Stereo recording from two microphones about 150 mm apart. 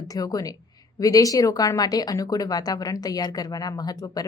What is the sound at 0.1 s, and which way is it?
A woman's voice, 25° left (ahead or behind).